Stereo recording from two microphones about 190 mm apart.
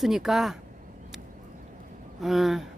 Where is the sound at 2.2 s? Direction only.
Centre (ahead or behind).